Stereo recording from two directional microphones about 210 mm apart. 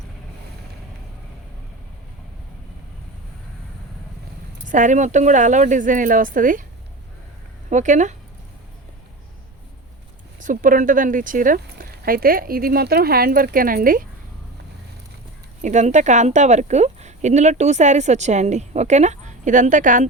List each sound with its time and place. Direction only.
4.6 s a woman's voice: 35° right (ahead or behind)
7.7 s a woman's voice: 35° right (ahead or behind)
10.4 s speech: 40° right (ahead or behind)
15.6 s a woman's voice: 35° right (ahead or behind)